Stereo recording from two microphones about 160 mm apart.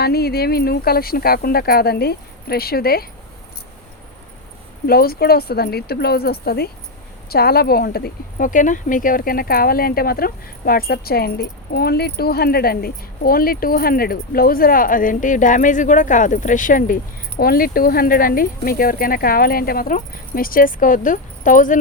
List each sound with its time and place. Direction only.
0.0 s speech: 80° left
4.9 s speech: 70° left (ahead or behind); by 21.8 s 55° left (ahead or behind)